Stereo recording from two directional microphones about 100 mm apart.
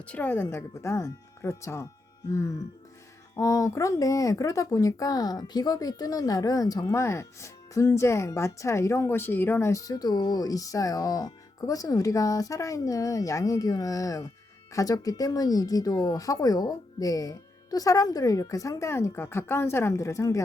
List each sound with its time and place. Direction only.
0.0 s a woman's voice: 15° left (ahead or behind)
0.4 s speech: 30° left (ahead or behind)